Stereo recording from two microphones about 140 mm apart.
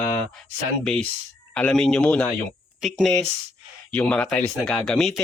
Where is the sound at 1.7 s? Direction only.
5° left (ahead or behind).